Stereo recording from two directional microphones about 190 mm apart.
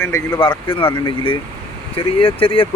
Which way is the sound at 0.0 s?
10° left (ahead or behind).